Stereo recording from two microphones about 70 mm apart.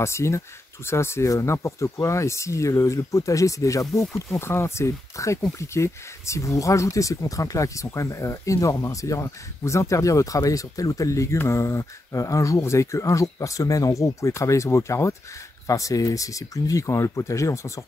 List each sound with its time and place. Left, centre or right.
0.0 s speech: left
15.6 s speech: left